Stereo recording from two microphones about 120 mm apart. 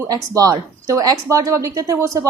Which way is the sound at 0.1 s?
30° right (ahead or behind).